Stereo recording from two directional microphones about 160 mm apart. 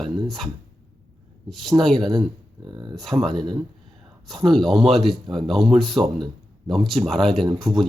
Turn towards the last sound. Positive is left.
turn(degrees=0)  # may be behind; listen again after turning